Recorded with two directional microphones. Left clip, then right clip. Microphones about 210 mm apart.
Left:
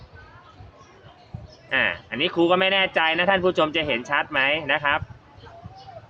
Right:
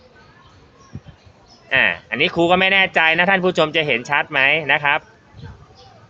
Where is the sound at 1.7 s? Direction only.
30° right (ahead or behind).